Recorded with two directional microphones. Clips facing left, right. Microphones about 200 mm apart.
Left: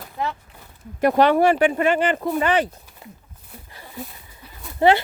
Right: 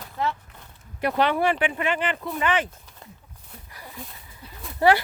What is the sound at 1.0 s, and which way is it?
Speech, 45° left (ahead or behind).